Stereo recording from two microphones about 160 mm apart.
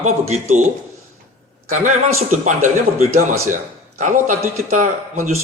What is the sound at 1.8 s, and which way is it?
A man's voice, 50° right (ahead or behind).